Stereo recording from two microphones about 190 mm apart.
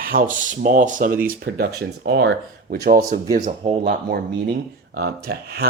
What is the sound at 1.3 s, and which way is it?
Speech, 55° right (ahead or behind).